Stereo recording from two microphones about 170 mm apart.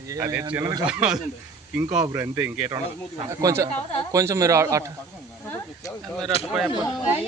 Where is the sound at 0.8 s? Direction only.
5° right (ahead or behind).